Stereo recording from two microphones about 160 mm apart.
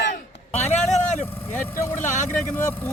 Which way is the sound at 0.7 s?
45° left (ahead or behind).